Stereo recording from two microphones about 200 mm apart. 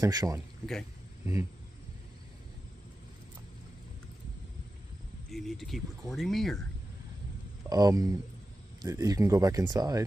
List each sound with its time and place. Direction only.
0.0 s speech: 15° right (ahead or behind)
1.2 s a sound: 10° right (ahead or behind)
5.3 s speech: centre (ahead or behind)
7.7 s speech: 15° right (ahead or behind)